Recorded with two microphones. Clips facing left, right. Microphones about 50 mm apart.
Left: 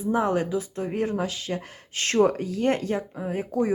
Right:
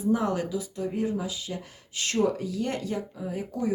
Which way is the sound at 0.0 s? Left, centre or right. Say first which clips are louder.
Left 2 dB; left.